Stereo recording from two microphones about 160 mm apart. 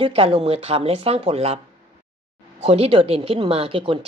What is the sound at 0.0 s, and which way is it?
Speech, 35° right (ahead or behind).